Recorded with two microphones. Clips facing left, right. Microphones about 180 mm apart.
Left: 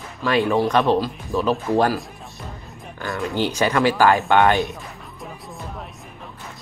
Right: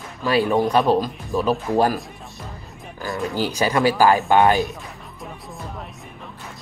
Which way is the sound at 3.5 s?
35° right (ahead or behind).